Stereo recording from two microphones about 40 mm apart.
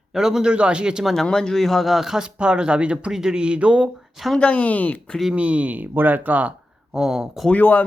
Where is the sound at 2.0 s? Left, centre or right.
Centre.